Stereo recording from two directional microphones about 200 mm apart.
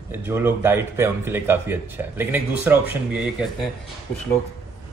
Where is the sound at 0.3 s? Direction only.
10° right (ahead or behind).